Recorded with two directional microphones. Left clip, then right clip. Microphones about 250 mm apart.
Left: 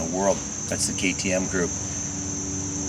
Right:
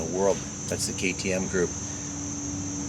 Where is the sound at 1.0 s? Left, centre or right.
Right.